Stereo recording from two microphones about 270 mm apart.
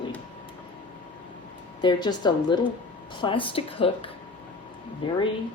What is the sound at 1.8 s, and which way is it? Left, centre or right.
A woman's voice, centre.